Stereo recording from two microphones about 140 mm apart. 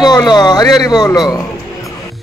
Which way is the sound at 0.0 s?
30° left (ahead or behind).